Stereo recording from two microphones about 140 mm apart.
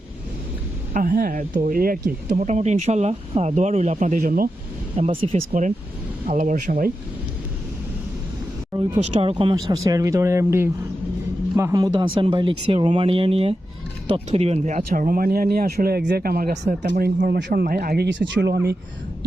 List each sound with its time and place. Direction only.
0.9 s speech: 90° right
2.4 s speech: 55° right (ahead or behind); by 4.4 s 80° right
4.9 s speech: 45° right (ahead or behind)
6.2 s speech: 65° right (ahead or behind); by 6.9 s 85° right
8.7 s speech: 30° right (ahead or behind)
9.8 s speech: 25° right (ahead or behind); by 17.9 s 90° right